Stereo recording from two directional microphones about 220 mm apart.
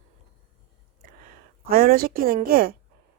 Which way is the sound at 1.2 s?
40° right (ahead or behind).